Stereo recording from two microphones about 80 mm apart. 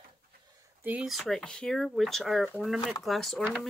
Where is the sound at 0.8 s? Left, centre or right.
Centre.